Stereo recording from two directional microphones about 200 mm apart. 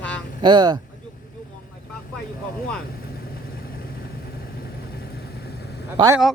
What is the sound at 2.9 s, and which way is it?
Vehicle, 50° left (ahead or behind).